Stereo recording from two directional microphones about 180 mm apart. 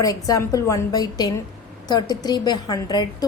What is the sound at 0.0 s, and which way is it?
A woman's voice, 20° left (ahead or behind).